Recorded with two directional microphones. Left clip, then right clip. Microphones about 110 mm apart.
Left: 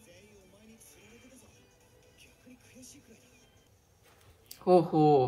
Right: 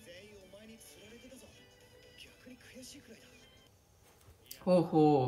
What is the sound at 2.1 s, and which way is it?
Music, 20° left (ahead or behind).